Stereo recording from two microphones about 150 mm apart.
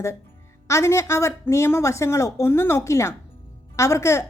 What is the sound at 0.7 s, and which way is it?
Speech, 20° left (ahead or behind).